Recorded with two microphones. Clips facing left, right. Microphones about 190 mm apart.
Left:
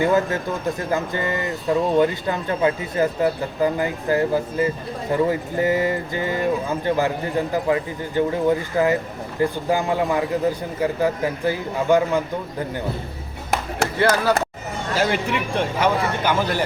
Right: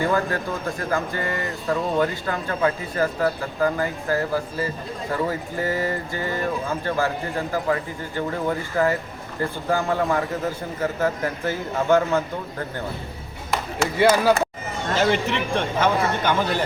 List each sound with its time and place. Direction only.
0.0 s speech: 20° left (ahead or behind)
14.0 s speech: 10° right (ahead or behind)
14.9 s speech: 10° left (ahead or behind)